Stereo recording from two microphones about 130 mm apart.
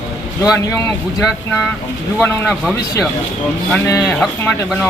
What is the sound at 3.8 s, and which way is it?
Speech, 25° left (ahead or behind).